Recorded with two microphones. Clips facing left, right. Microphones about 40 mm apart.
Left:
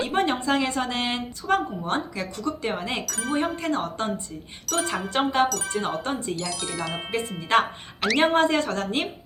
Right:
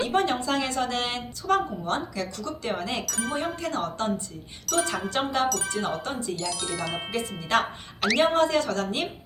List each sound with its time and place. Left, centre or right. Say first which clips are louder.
0.0 s a woman's voice: left 1 dB; left
3.1 s speech: left 1 dB; centre
3.6 s a woman's voice: left 2 dB; left
4.6 s speech: right 1 dB; centre
5.0 s a woman's voice: left 3 dB; left
6.1 s a woman's voice: left 3 dB; left
6.3 s speech: even; centre
7.1 s a woman's voice: left 4 dB; left